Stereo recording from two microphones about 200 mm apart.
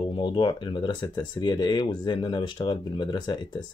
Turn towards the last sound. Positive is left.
turn(degrees=20)  # may be behind; listen again after turning